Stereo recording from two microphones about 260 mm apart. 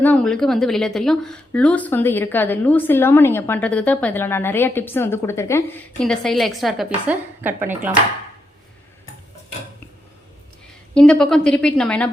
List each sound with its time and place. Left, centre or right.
0.0 s a woman's voice: centre
10.9 s a woman's voice: centre